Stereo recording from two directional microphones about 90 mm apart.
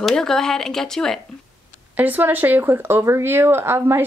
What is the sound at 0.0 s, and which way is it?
Speech, 5° left (ahead or behind).